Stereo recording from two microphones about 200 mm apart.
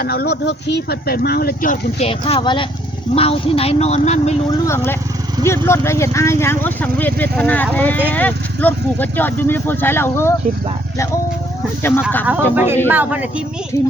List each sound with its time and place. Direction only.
0.0 s speech: 50° left (ahead or behind); by 4.4 s 35° left (ahead or behind)
4.6 s speech: 15° left (ahead or behind)
11.8 s speech: 10° left (ahead or behind)
12.2 s speech: 10° right (ahead or behind)